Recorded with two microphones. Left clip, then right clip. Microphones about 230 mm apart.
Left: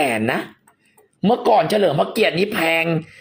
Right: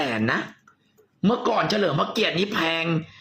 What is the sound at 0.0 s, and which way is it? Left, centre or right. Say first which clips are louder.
Speech: left 5 dB; centre.